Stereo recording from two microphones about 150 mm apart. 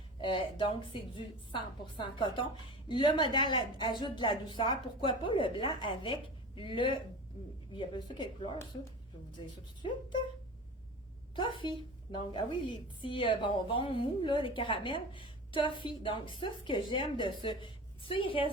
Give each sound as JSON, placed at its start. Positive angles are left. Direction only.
{"t": 0.2, "sound": "a woman's voice", "side_deg": 35}
{"t": 11.3, "sound": "a woman's voice", "side_deg": 35}